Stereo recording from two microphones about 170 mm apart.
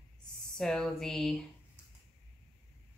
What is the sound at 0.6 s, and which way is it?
Speech, centre (ahead or behind).